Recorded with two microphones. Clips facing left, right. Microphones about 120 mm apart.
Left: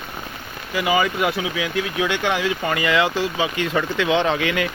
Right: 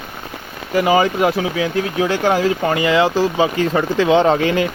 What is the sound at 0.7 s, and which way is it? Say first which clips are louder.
Speech: right 6 dB; 35° right (ahead or behind).